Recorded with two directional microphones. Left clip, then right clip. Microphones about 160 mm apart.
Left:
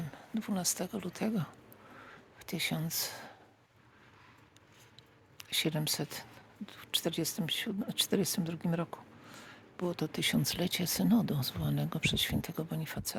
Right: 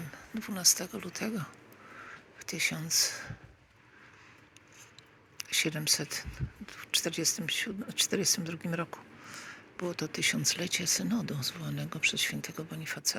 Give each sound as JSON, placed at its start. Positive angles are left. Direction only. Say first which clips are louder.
{"t": 0.0, "sound": "speech", "louder": "even", "side_deg": 30}
{"t": 5.4, "sound": "speech", "louder": "right 2 dB", "side_deg": 30}